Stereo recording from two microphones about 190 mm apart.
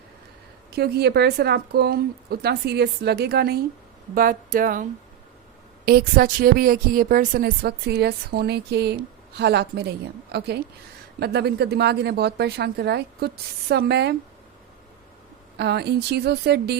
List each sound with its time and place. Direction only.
0.7 s a woman's voice: 60° right (ahead or behind)
15.5 s a woman's voice: 60° right (ahead or behind)